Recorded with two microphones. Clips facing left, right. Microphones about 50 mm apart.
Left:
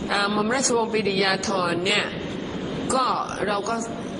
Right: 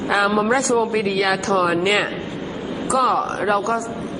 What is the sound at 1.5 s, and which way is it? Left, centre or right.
Speech, centre.